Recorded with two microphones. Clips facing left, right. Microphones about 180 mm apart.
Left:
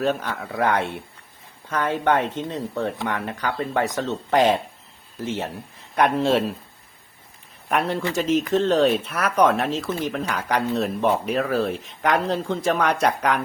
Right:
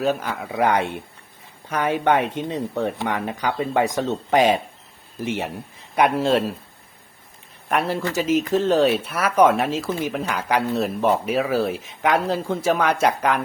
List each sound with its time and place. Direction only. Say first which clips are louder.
0.0 s speech: right 1 dB; 5° right (ahead or behind)
0.5 s speech: right 2 dB; 15° right (ahead or behind)
6.0 s speech: right 1 dB; 5° right (ahead or behind)
7.7 s speech: even; centre (ahead or behind)